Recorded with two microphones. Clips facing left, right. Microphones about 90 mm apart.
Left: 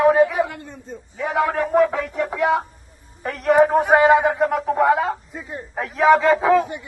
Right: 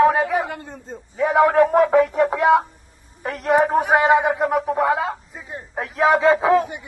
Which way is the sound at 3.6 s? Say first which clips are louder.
Left 3 dB; 5° right (ahead or behind).